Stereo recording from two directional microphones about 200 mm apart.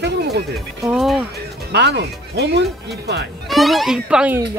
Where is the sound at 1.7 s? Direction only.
55° right (ahead or behind).